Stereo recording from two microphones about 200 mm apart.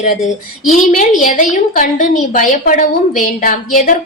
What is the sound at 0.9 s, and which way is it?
A woman's voice, 40° left (ahead or behind).